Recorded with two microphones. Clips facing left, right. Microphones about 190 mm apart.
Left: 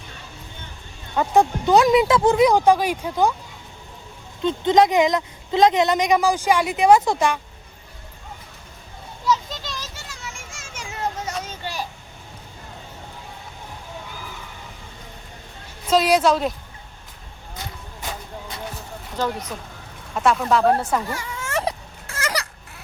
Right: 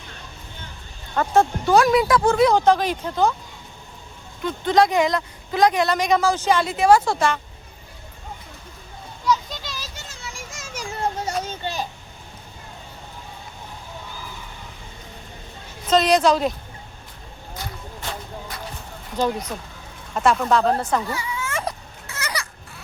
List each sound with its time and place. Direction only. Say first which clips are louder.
1.1 s a woman's voice: left 1 dB; 10° left (ahead or behind)
4.4 s a woman's voice: left 2 dB; 20° left (ahead or behind)
9.2 s children playing: even; centre (ahead or behind)
10.2 s children playing: right 4 dB; 40° right (ahead or behind)
15.9 s a woman's voice: even; 10° left (ahead or behind)
19.2 s speech: right 2 dB; 15° right (ahead or behind)
20.1 s speech: even; centre (ahead or behind)
21.1 s turkey: even; 45° left (ahead or behind)